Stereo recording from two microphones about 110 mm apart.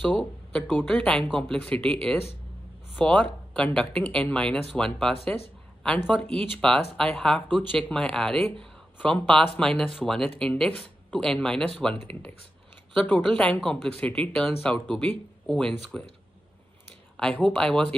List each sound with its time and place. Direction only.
0.0 s speech: 10° left (ahead or behind)
17.2 s speech: 15° left (ahead or behind)